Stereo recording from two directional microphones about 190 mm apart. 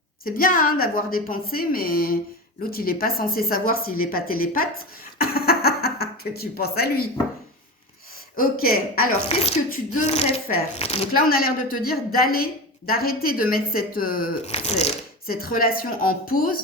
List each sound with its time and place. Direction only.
0.3 s a woman's voice: 50° left (ahead or behind)
5.1 s a sound: 55° left (ahead or behind)
8.4 s a woman's voice: 50° left (ahead or behind)
9.3 s speech: 30° left (ahead or behind)
11.1 s a woman's voice: 50° left (ahead or behind)
14.4 s speech: 35° left (ahead or behind)
15.3 s a woman's voice: 50° left (ahead or behind)